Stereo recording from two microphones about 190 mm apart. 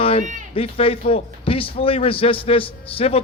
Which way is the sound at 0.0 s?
30° left (ahead or behind).